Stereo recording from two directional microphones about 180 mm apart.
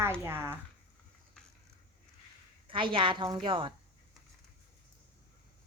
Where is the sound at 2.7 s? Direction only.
30° right (ahead or behind).